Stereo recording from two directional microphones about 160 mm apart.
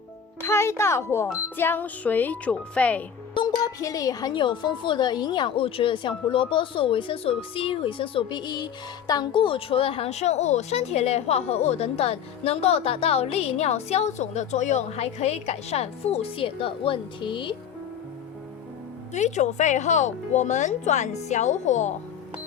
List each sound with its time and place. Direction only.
0.4 s speech: 15° left (ahead or behind)
3.3 s speech: 30° left (ahead or behind)
19.1 s a woman's voice: 45° left (ahead or behind)